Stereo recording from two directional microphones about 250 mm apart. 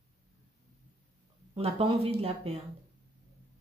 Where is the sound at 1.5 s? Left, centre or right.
Right.